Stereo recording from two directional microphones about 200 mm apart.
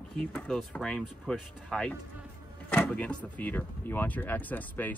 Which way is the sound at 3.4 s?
10° left (ahead or behind).